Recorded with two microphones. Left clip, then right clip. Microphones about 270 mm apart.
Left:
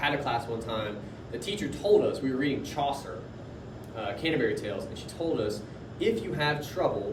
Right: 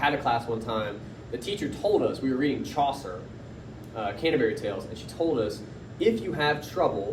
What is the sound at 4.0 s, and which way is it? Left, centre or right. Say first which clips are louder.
Speech: right 3 dB; centre.